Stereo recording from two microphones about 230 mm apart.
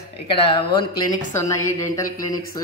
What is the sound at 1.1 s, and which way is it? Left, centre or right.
Speech, centre.